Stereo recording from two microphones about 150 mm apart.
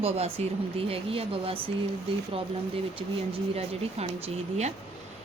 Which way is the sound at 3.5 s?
45° right (ahead or behind).